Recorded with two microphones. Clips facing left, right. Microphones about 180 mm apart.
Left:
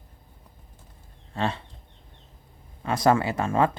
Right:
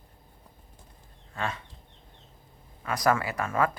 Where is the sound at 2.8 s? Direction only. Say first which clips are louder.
Left 4 dB; 25° left (ahead or behind).